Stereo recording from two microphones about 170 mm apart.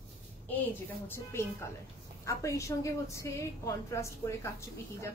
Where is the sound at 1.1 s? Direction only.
15° left (ahead or behind).